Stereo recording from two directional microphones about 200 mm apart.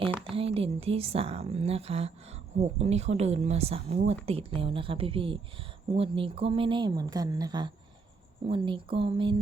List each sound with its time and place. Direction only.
0.3 s a woman's voice: 30° right (ahead or behind)